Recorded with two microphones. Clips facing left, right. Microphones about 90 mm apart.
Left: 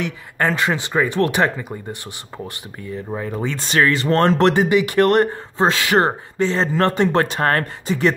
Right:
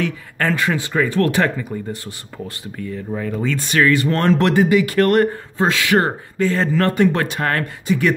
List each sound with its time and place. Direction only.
0.0 s speech: 20° left (ahead or behind)